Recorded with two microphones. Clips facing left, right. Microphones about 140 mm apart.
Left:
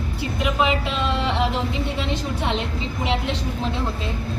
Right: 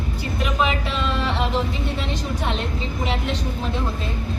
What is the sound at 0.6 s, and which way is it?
Speech, 20° left (ahead or behind).